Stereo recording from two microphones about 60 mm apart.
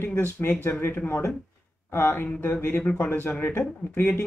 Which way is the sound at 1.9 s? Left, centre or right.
Left.